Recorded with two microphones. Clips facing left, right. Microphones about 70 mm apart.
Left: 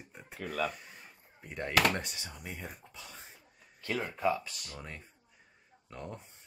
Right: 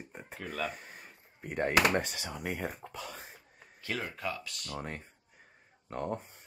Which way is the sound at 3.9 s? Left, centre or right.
Centre.